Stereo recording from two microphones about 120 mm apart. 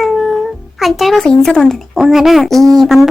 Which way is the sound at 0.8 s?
Centre (ahead or behind).